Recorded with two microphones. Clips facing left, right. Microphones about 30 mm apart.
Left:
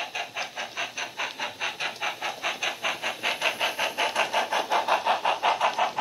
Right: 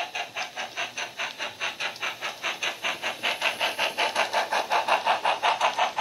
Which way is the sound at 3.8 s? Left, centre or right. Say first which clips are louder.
Right 1 dB; right.